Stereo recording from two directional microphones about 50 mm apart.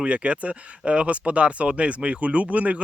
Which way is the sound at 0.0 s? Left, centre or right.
Right.